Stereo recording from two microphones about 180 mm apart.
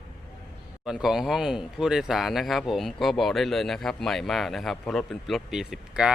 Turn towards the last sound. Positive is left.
turn(degrees=-5)  # may be behind; listen again after turning